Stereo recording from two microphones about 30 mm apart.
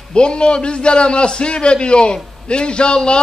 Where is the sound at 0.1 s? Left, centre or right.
Left.